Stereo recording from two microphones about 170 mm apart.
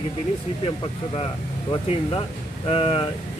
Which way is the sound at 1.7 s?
30° left (ahead or behind).